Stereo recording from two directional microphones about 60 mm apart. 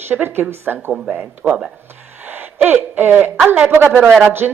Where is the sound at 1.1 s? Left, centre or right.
Right.